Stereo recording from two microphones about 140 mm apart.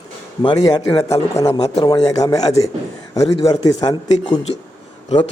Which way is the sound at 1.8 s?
25° left (ahead or behind).